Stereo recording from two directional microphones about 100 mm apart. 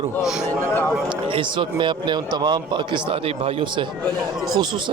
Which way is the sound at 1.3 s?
55° right (ahead or behind).